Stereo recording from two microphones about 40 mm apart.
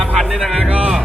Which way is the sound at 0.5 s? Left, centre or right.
Right.